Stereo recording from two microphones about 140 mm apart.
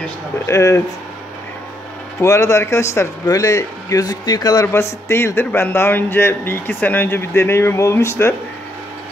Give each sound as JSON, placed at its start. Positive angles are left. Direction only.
{"t": 0.5, "sound": "speech", "side_deg": 20}
{"t": 2.2, "sound": "speech", "side_deg": 20}